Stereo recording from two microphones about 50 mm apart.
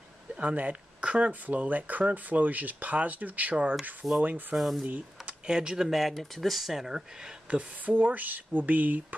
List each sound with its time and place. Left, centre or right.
0.4 s speech: right
4.6 s speech: centre
4.8 s speech: right
5.5 s speech: centre
7.4 s speech: right